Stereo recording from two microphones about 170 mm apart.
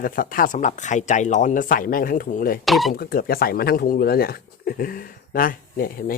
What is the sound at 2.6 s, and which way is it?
Speech, centre (ahead or behind).